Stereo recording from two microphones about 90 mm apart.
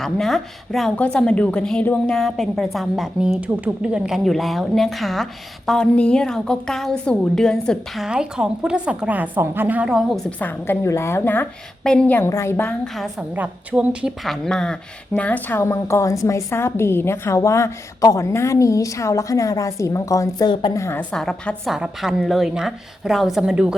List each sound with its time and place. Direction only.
0.0 s a woman's voice: 5° left (ahead or behind)
8.0 s a woman's voice: 10° right (ahead or behind)
10.2 s a woman's voice: 15° left (ahead or behind)
10.8 s a woman's voice: 30° left (ahead or behind)
11.8 s a woman's voice: 10° left (ahead or behind)
12.3 s a woman's voice: 30° left (ahead or behind)
12.6 s a woman's voice: 10° left (ahead or behind)
13.3 s a woman's voice: 15° right (ahead or behind)
14.3 s a woman's voice: 5° left (ahead or behind); by 20.5 s 35° left (ahead or behind)
20.5 s a woman's voice: 70° left (ahead or behind)
20.7 s a woman's voice: 30° left (ahead or behind)
21.7 s a woman's voice: 5° right (ahead or behind)